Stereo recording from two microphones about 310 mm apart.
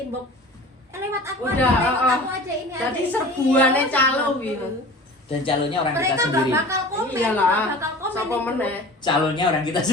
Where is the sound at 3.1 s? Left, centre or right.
Centre.